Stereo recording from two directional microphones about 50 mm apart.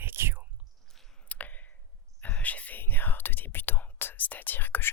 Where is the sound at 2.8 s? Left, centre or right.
Left.